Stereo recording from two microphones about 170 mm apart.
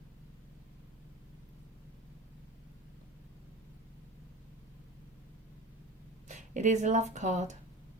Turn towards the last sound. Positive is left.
turn(degrees=-45)  # may be behind; listen again after turning